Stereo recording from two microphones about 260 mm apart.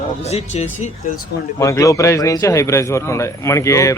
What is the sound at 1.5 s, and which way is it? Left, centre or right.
Speech, centre.